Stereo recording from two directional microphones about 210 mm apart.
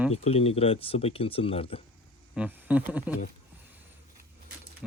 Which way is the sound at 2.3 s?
5° right (ahead or behind).